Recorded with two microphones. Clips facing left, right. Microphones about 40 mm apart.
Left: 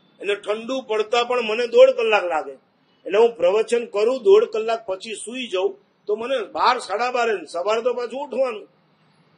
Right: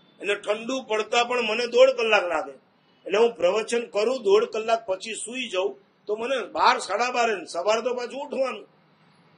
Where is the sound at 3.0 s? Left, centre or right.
Centre.